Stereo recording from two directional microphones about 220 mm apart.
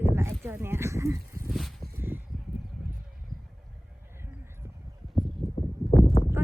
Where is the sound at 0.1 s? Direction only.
10° right (ahead or behind).